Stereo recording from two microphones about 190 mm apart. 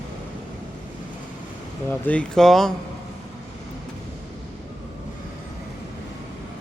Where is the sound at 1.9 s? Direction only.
10° left (ahead or behind).